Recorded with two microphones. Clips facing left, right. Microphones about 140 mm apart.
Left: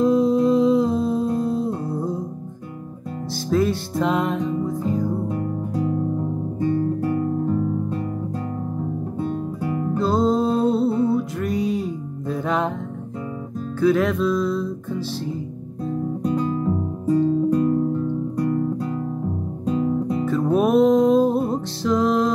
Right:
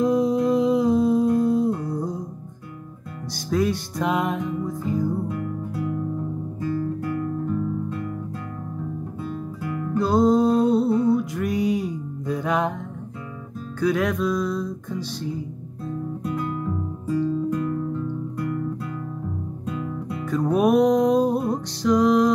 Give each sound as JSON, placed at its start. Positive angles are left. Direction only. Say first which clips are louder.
{"t": 0.0, "sound": "music", "louder": "left 3 dB", "side_deg": 0}
{"t": 3.4, "sound": "music", "louder": "left 2 dB", "side_deg": 0}
{"t": 4.8, "sound": "music", "louder": "left 2 dB", "side_deg": 25}
{"t": 6.6, "sound": "guitar", "louder": "left 5 dB", "side_deg": 25}
{"t": 9.2, "sound": "guitar", "louder": "left 7 dB", "side_deg": 25}
{"t": 9.8, "sound": "music", "louder": "even", "side_deg": 30}
{"t": 10.0, "sound": "music", "louder": "right 2 dB", "side_deg": 0}
{"t": 10.8, "sound": "music", "louder": "even", "side_deg": 25}
{"t": 11.1, "sound": "music", "louder": "left 1 dB", "side_deg": 0}
{"t": 13.7, "sound": "music", "louder": "left 4 dB", "side_deg": 0}
{"t": 16.3, "sound": "guitar", "louder": "left 6 dB", "side_deg": 30}
{"t": 17.2, "sound": "music", "louder": "left 5 dB", "side_deg": 30}
{"t": 18.0, "sound": "guitar", "louder": "left 5 dB", "side_deg": 30}
{"t": 20.2, "sound": "music", "louder": "right 1 dB", "side_deg": 0}